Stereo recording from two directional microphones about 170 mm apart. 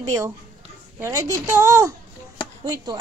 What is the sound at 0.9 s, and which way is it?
A woman's voice, 20° right (ahead or behind).